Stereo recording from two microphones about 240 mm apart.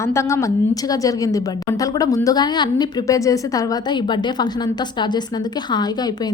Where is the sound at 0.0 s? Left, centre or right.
Centre.